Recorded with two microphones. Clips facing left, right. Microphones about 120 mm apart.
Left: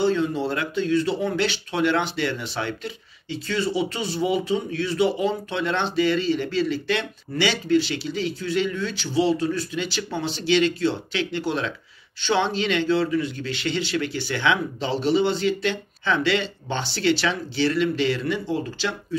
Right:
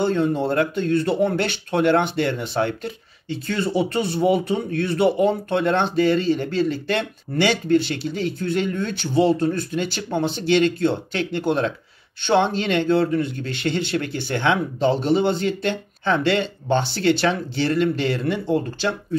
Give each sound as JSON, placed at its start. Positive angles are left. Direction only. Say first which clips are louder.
{"t": 0.0, "sound": "speech", "louder": "right 2 dB", "side_deg": -50}